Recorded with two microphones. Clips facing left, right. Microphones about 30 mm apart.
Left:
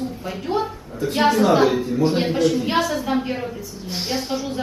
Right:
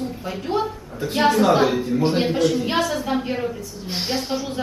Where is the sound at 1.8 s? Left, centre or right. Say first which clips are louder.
Left 1 dB; right.